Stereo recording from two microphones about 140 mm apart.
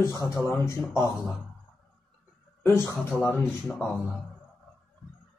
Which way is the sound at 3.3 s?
Centre (ahead or behind).